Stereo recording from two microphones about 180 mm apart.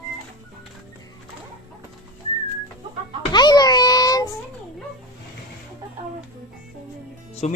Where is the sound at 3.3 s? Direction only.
25° left (ahead or behind).